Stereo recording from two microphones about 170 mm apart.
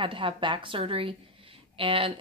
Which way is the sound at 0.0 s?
30° right (ahead or behind).